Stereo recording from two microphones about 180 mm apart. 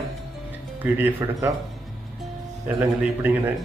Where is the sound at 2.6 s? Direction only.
10° right (ahead or behind).